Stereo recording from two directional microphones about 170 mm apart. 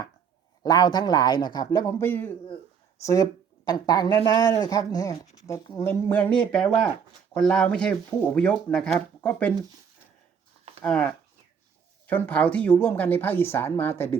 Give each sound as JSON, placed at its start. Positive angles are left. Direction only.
{"t": 0.6, "sound": "a woman's voice", "side_deg": 25}
{"t": 10.8, "sound": "a woman's voice", "side_deg": 10}